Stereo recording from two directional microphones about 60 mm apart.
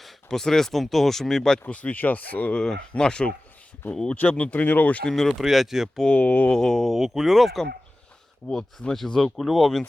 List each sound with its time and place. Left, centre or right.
0.0 s speech: centre
1.6 s speech: left
2.6 s speech: centre
5.0 s speech: centre
5.3 s speech: centre
6.0 s speech: centre
6.5 s speech: centre
8.4 s speech: centre